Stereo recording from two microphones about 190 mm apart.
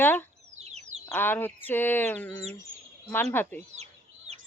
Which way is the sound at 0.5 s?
35° right (ahead or behind).